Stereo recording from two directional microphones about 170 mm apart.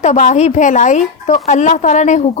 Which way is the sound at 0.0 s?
45° left (ahead or behind).